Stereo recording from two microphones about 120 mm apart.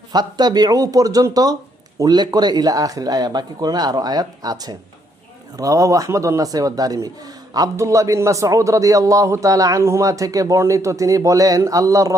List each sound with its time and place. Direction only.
0.1 s a man's voice: 35° right (ahead or behind)